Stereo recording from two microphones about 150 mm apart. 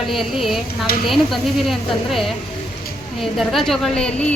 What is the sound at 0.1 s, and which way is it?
A woman's voice, centre (ahead or behind).